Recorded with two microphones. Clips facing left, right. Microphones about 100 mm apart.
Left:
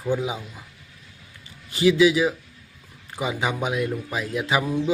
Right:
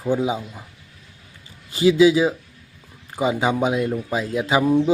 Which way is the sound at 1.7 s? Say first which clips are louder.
Right 3 dB; 25° right (ahead or behind).